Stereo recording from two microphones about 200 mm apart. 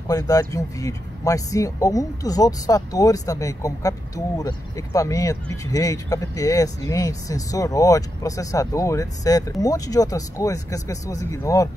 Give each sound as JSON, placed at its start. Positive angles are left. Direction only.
{"t": 0.1, "sound": "speech", "side_deg": 20}